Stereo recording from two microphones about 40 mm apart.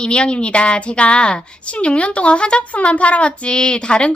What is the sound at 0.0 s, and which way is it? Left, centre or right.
A woman's voice, left.